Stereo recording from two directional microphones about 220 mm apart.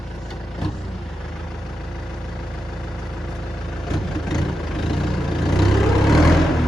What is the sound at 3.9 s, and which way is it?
Vehicle, centre (ahead or behind).